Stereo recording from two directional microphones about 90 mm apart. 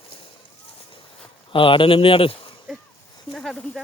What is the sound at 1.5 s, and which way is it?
Speech, 75° left (ahead or behind).